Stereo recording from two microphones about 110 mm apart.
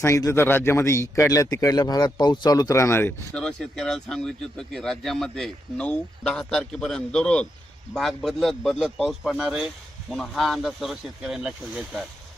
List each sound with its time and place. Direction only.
0.0 s a man's voice: 30° left (ahead or behind)
3.3 s speech: 5° left (ahead or behind)